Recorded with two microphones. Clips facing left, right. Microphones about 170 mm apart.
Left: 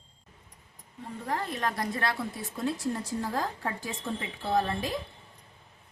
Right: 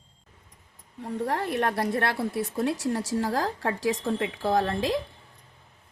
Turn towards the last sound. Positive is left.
turn(degrees=-90)